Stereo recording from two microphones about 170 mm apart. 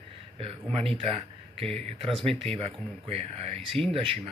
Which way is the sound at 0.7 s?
35° right (ahead or behind).